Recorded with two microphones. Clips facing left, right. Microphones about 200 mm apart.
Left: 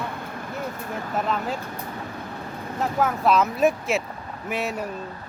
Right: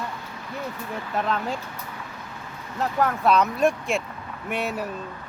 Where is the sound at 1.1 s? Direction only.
Centre (ahead or behind).